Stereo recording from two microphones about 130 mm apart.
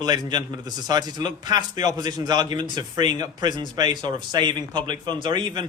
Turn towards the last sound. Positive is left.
turn(degrees=-40)  # may be behind; listen again after turning